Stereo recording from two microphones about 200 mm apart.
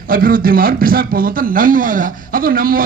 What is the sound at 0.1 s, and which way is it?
A man's voice, 45° right (ahead or behind).